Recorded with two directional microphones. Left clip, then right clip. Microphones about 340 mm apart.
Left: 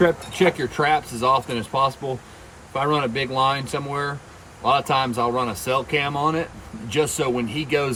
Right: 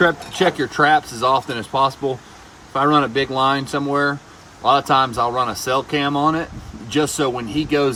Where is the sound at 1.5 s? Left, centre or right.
Right.